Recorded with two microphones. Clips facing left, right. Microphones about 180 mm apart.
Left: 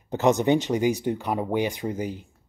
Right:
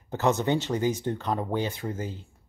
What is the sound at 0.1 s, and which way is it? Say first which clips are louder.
Speech: left 4 dB; 15° left (ahead or behind).